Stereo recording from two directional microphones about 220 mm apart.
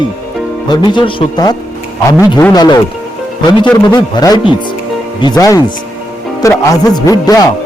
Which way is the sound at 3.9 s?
20° left (ahead or behind).